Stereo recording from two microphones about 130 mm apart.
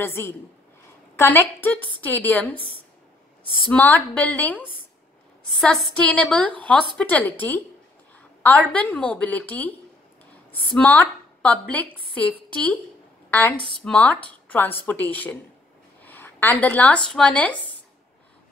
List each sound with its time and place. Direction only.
0.0 s a woman's voice: 20° left (ahead or behind)
3.7 s a woman's voice: 10° left (ahead or behind)
10.7 s a woman's voice: 10° left (ahead or behind)